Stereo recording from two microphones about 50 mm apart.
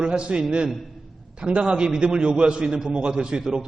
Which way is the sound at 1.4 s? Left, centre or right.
Right.